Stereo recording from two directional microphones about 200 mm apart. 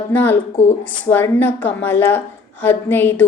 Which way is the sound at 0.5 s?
35° left (ahead or behind).